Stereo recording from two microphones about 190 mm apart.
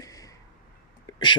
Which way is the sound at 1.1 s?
25° left (ahead or behind).